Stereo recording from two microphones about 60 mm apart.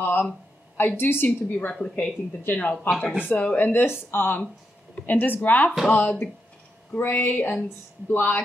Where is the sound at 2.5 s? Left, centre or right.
Left.